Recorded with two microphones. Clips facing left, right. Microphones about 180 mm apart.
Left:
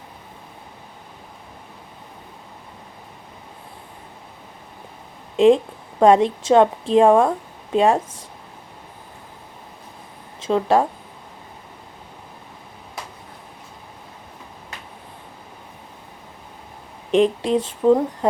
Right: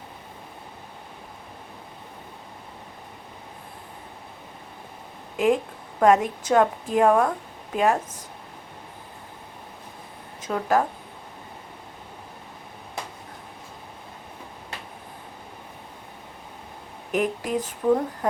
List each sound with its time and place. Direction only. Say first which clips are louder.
5.4 s a woman's voice: left 8 dB; 30° left (ahead or behind)
10.4 s speech: left 5 dB; 25° left (ahead or behind)
17.1 s speech: left 8 dB; 25° left (ahead or behind)